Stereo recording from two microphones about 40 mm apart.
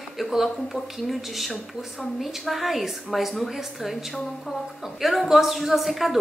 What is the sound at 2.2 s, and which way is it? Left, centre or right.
A woman's voice, centre.